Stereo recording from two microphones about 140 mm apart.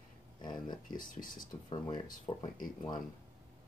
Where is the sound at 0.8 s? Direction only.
75° left (ahead or behind).